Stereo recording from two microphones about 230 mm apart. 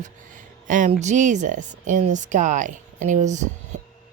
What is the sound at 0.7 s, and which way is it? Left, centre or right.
A woman's voice, right.